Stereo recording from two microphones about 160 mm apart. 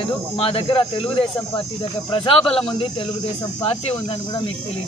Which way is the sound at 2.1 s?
35° left (ahead or behind).